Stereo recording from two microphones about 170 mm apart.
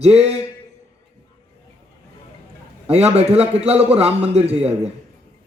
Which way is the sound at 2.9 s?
40° right (ahead or behind).